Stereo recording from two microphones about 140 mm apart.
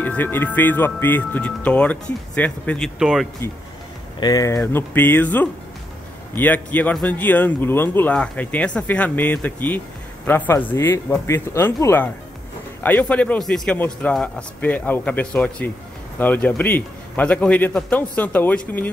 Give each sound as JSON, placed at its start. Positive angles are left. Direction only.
{"t": 0.0, "sound": "speech", "side_deg": 10}
{"t": 3.0, "sound": "speech", "side_deg": -5}
{"t": 4.2, "sound": "speech", "side_deg": 25}
{"t": 4.7, "sound": "speech", "side_deg": 15}